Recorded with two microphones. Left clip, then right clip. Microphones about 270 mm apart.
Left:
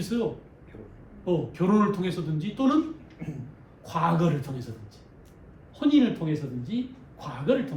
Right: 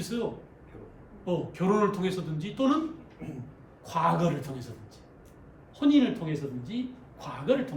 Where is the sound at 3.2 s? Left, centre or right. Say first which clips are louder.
Left 1 dB; left.